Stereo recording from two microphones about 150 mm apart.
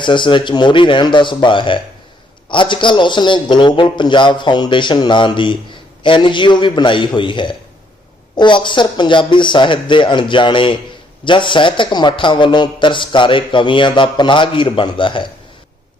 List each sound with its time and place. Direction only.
0.0 s a man's voice: 30° left (ahead or behind)